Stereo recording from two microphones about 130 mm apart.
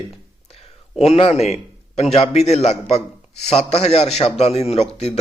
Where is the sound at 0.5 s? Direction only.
50° left (ahead or behind).